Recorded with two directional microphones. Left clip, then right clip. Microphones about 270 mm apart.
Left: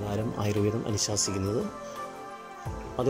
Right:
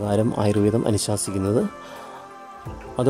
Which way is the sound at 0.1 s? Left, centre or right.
Centre.